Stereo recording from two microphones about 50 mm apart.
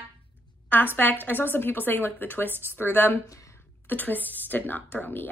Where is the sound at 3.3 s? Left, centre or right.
Left.